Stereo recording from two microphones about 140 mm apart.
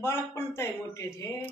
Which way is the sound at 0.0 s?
20° left (ahead or behind).